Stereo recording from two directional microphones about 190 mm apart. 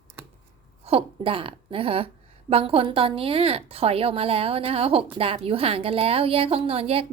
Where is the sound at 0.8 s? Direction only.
30° right (ahead or behind).